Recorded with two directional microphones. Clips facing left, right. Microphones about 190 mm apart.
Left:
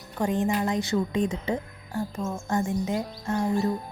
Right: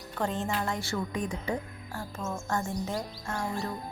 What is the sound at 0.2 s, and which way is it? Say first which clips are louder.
A woman's voice: left 6 dB; 15° left (ahead or behind).